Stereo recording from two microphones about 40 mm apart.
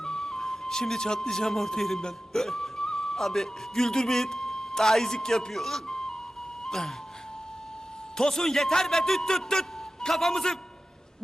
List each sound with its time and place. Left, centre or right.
0.0 s speech: centre
5.9 s music: centre
6.7 s speech: centre
8.2 s a man's voice: centre